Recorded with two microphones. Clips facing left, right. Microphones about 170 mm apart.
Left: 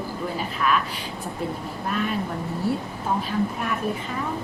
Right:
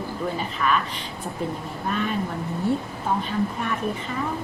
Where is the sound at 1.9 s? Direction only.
Centre (ahead or behind).